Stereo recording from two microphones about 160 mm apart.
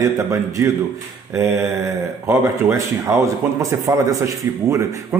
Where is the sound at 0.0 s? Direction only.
20° right (ahead or behind).